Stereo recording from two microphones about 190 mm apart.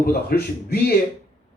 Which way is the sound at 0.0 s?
55° left (ahead or behind).